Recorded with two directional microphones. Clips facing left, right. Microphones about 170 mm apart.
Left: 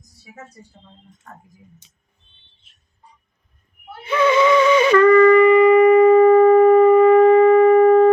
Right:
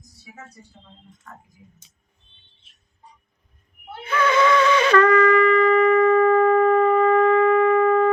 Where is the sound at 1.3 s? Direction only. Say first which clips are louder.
Left 1 dB; 40° left (ahead or behind).